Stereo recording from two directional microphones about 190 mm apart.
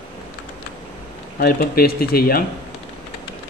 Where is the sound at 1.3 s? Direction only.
50° left (ahead or behind).